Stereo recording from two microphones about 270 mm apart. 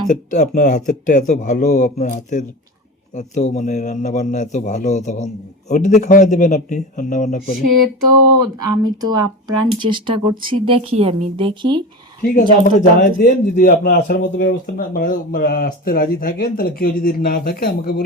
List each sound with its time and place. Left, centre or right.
0.1 s a man's voice: left
8.5 s speech: centre
12.2 s speech: left